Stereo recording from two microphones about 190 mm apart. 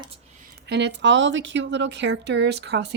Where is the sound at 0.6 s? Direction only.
65° right (ahead or behind).